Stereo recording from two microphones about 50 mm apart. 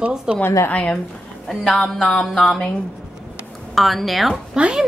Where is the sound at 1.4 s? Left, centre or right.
Centre.